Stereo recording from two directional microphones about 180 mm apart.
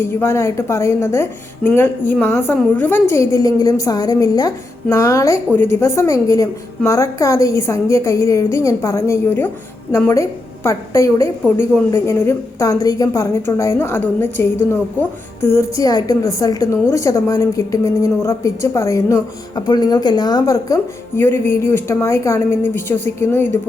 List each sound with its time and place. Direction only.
0.0 s a woman's voice: 10° left (ahead or behind)